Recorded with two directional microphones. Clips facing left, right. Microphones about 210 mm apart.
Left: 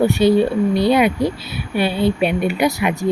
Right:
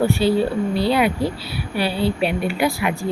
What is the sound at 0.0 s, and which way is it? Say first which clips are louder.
Speech: left 4 dB; 20° left (ahead or behind).